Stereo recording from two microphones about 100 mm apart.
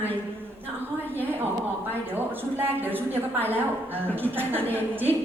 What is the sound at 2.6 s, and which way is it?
A woman's voice, 20° right (ahead or behind).